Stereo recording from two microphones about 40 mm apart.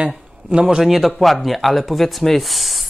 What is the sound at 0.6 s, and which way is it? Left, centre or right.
Speech, right.